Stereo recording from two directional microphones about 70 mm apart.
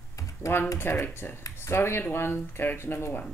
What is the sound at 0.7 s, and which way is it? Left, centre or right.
Speech, left.